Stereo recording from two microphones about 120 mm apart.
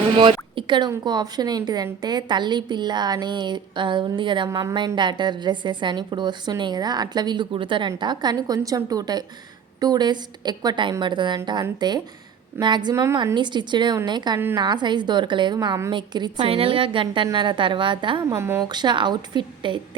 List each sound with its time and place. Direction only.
0.2 s a woman's voice: 45° right (ahead or behind)
12.9 s a woman's voice: 25° right (ahead or behind)
13.3 s a woman's voice: 40° right (ahead or behind)
14.3 s a woman's voice: 20° right (ahead or behind)
14.6 s a woman's voice: 40° right (ahead or behind)
16.5 s a woman's voice: 50° right (ahead or behind)
18.3 s a woman's voice: 20° right (ahead or behind)
18.7 s a woman's voice: 40° right (ahead or behind)